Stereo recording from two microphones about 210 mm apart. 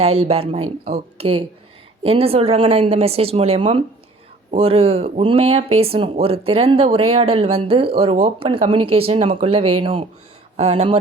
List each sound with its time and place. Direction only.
0.0 s speech: 30° right (ahead or behind)